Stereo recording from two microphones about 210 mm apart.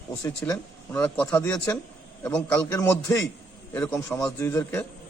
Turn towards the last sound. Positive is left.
turn(degrees=10)  # may be behind; listen again after turning